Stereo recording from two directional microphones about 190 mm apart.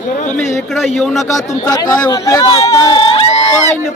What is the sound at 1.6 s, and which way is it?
Speech, 20° left (ahead or behind).